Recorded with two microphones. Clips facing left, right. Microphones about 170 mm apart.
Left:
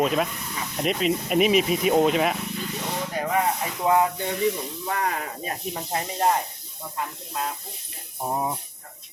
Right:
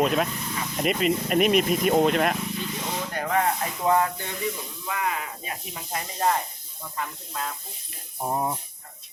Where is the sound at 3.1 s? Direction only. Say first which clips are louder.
Left 1 dB; 5° left (ahead or behind).